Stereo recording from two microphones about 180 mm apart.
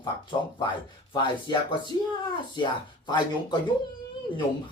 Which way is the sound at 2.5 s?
25° left (ahead or behind).